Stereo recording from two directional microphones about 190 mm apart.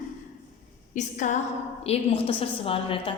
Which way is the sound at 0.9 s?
40° left (ahead or behind).